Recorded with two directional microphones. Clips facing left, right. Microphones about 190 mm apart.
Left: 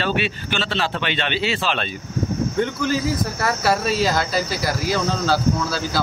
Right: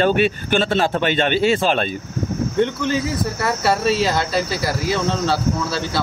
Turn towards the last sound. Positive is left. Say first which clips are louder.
# right 1 dB
turn(degrees=0)  # may be behind; listen again after turning